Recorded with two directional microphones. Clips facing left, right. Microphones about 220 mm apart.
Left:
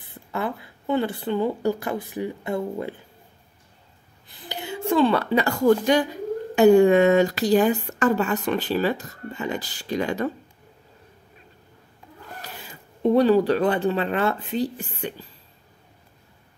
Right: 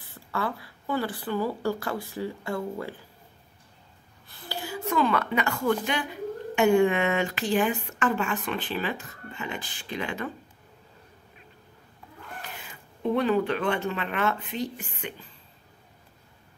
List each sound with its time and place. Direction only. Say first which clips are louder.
0.0 s speech: left 3 dB; 20° left (ahead or behind)
4.3 s speech: left 2 dB; 20° left (ahead or behind); by 10.3 s 40° left (ahead or behind)
12.4 s speech: left 2 dB; 35° left (ahead or behind)